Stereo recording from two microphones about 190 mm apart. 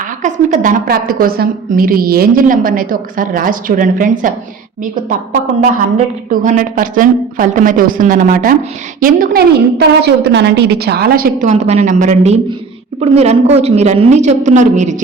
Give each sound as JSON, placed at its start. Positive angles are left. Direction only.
{"t": 0.2, "sound": "a woman's voice", "side_deg": -40}
{"t": 6.4, "sound": "a woman's voice", "side_deg": -45}